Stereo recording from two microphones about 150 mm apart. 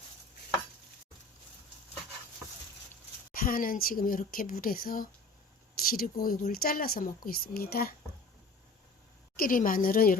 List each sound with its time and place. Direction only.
3.3 s speech: 75° left (ahead or behind)
9.3 s speech: 70° left (ahead or behind)